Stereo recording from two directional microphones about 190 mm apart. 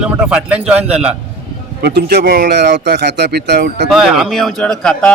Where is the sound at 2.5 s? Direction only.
65° right (ahead or behind).